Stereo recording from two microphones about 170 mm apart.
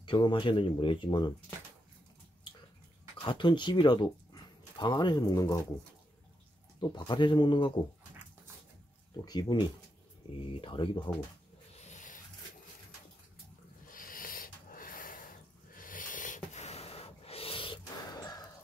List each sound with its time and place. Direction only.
0.0 s speech: 30° left (ahead or behind)
3.3 s speech: 30° left (ahead or behind)
6.8 s speech: 30° left (ahead or behind)
9.1 s speech: 25° left (ahead or behind)
11.8 s a sound: 45° left (ahead or behind)
13.8 s snort: 55° left (ahead or behind); by 17.7 s 30° left (ahead or behind)
18.2 s a sound: 20° left (ahead or behind)